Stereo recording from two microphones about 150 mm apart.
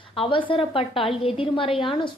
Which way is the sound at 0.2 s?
35° left (ahead or behind).